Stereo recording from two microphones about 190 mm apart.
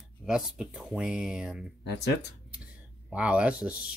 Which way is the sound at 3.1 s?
5° right (ahead or behind).